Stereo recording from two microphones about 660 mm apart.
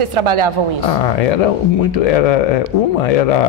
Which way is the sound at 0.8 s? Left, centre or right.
Left.